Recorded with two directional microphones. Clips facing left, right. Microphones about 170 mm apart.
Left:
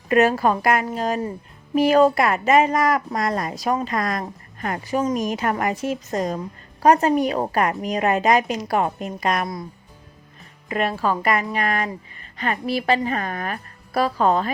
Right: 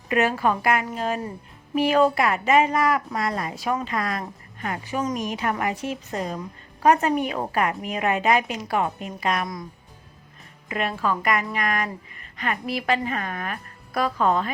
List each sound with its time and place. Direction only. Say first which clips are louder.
0.1 s a woman's voice: left 4 dB; 40° left (ahead or behind)
10.7 s a woman's voice: left 3 dB; 40° left (ahead or behind)